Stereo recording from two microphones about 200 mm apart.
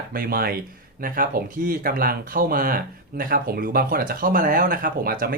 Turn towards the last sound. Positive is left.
turn(degrees=-45)  # may be behind; listen again after turning